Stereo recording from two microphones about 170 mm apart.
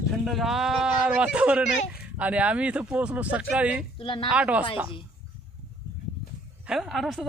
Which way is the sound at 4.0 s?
30° left (ahead or behind).